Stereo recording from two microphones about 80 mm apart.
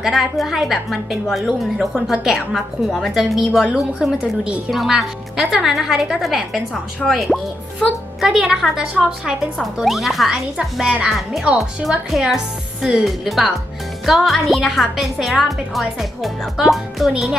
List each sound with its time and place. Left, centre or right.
0.0 s a woman's voice: centre